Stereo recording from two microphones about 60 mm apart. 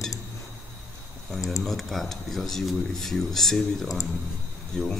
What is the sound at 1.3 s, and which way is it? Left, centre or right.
Speech, centre.